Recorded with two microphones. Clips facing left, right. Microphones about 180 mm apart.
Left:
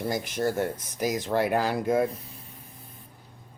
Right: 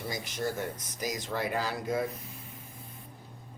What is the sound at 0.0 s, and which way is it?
Speech, 55° left (ahead or behind).